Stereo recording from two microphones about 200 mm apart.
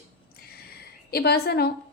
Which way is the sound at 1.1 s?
55° left (ahead or behind).